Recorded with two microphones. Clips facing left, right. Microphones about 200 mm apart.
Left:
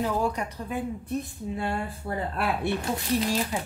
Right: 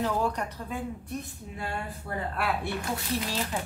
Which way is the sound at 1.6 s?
25° left (ahead or behind).